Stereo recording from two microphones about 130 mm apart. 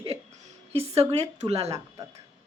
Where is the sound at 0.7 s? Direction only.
50° right (ahead or behind).